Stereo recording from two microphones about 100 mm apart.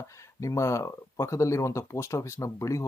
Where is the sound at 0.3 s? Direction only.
30° left (ahead or behind).